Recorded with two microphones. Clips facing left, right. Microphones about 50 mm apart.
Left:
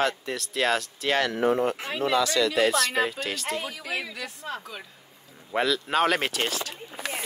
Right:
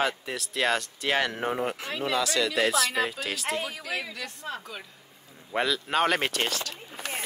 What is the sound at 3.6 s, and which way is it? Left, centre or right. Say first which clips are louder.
Speech: left 1 dB; centre.